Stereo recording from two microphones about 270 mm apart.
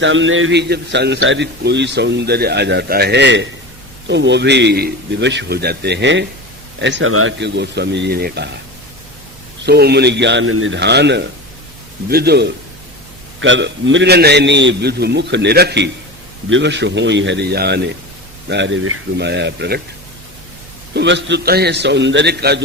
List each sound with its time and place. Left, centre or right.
0.0 s a man's voice: right
9.6 s a man's voice: right
20.9 s a man's voice: right